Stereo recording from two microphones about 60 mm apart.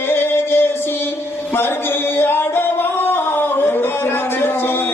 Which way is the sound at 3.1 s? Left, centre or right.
Left.